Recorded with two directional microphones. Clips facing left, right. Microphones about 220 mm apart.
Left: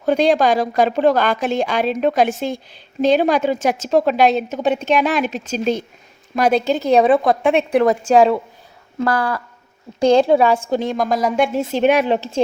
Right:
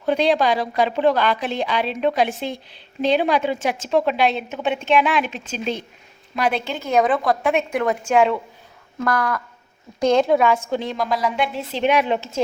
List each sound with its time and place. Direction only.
0.0 s a woman's voice: 45° left (ahead or behind)